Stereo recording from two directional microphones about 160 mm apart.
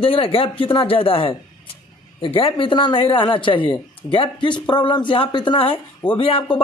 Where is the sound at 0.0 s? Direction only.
35° left (ahead or behind).